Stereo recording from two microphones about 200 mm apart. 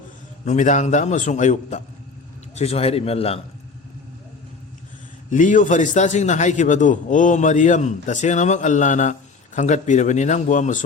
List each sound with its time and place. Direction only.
0.4 s a man's voice: 35° left (ahead or behind)
5.3 s a man's voice: 40° left (ahead or behind)